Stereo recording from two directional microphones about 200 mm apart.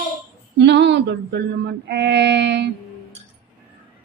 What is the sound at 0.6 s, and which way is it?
Music, 60° right (ahead or behind).